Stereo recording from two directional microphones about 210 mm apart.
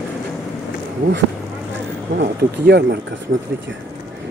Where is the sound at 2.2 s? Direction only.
55° right (ahead or behind).